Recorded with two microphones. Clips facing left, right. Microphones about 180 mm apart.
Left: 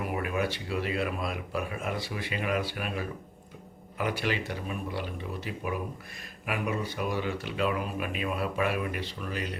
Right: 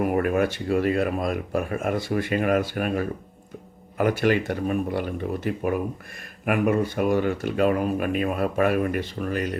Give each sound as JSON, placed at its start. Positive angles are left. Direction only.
{"t": 0.0, "sound": "speech", "side_deg": -50}